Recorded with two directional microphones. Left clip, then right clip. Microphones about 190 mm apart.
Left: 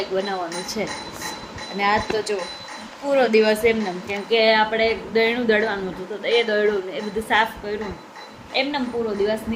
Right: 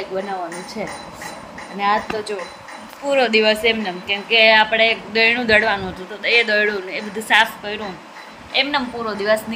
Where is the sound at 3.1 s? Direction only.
Centre (ahead or behind).